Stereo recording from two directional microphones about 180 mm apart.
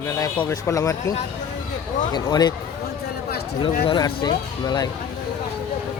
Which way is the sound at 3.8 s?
30° left (ahead or behind).